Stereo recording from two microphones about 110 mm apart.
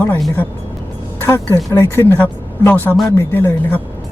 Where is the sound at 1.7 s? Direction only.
20° left (ahead or behind).